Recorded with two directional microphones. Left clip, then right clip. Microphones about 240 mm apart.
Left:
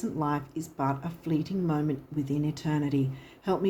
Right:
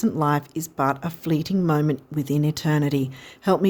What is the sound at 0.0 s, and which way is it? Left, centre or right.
Speech, right.